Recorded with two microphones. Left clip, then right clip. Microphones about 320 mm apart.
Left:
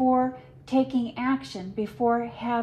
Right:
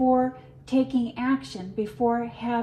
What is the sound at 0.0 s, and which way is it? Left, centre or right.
A woman's voice, left.